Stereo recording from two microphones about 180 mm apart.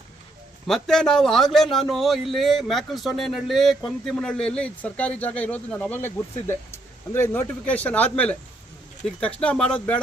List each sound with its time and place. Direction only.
0.7 s a man's voice: 5° left (ahead or behind)